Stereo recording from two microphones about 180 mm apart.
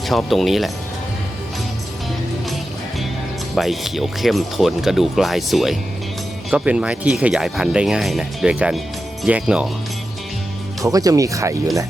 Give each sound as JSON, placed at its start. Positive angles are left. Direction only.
{"t": 0.1, "sound": "speech", "side_deg": 0}
{"t": 3.5, "sound": "speech", "side_deg": 0}
{"t": 10.8, "sound": "speech", "side_deg": -20}